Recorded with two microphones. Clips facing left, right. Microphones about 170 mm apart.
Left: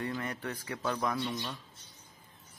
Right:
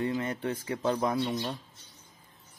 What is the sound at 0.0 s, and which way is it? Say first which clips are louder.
Speech: right 6 dB; 25° right (ahead or behind).